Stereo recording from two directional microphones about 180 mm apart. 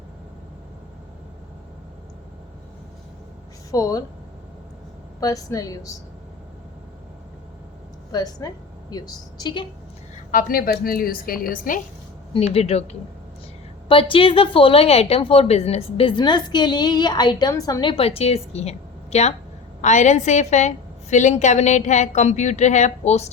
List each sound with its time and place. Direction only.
3.7 s a woman's voice: 20° left (ahead or behind)
5.2 s a woman's voice: 20° left (ahead or behind)
8.1 s a woman's voice: 20° left (ahead or behind)
10.2 s a woman's voice: 50° left (ahead or behind)
12.3 s a woman's voice: 35° left (ahead or behind)